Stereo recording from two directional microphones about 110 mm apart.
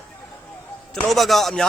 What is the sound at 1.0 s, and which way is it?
Speech, centre (ahead or behind).